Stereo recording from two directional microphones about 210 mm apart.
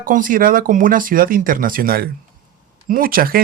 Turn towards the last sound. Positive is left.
turn(degrees=-45)  # may be behind; listen again after turning